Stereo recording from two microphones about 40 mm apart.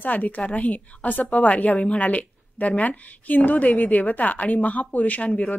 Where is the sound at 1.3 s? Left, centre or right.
Left.